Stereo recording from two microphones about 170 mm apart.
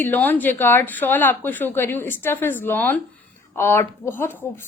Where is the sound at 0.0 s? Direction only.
10° left (ahead or behind).